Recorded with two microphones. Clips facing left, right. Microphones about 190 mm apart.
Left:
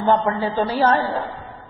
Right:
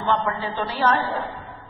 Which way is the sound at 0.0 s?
40° left (ahead or behind).